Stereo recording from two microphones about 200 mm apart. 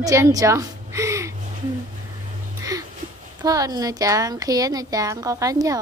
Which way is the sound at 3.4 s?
20° right (ahead or behind).